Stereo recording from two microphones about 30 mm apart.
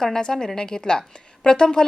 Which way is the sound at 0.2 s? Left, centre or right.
Left.